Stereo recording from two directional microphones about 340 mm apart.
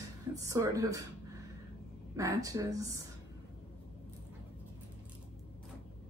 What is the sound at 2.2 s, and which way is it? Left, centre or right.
Speech, centre.